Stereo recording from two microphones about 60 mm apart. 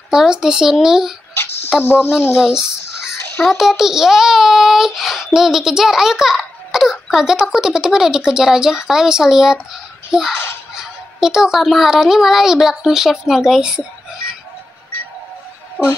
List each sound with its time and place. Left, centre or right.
0.1 s a child's voice: centre
1.8 s speech: left
2.3 s a child's voice: centre
15.8 s music: centre